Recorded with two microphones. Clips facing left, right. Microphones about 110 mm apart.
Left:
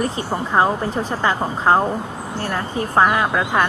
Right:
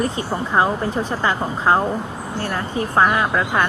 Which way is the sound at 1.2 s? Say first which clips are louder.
Left 1 dB; 35° left (ahead or behind).